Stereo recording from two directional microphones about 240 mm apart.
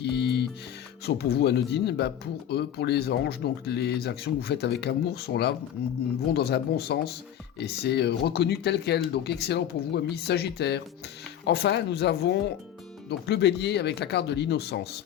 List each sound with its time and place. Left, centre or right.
0.0 s music: left
1.0 s speech: left